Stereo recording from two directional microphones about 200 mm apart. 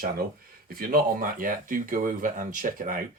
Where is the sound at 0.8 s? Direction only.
45° right (ahead or behind).